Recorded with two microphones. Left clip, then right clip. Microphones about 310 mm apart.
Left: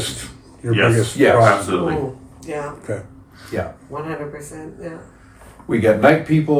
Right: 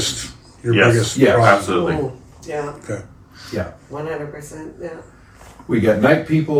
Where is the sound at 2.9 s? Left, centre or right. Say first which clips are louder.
Left 1 dB; left.